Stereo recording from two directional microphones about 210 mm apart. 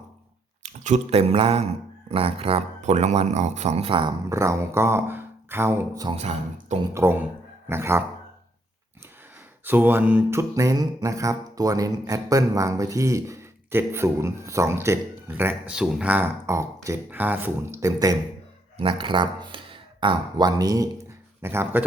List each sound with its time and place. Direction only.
0.6 s speech: 35° right (ahead or behind); by 6.1 s 15° right (ahead or behind)
6.1 s speech: 30° right (ahead or behind)
6.9 s mantra: 10° right (ahead or behind)
9.6 s mantra: 10° right (ahead or behind)
18.8 s speech: 25° right (ahead or behind)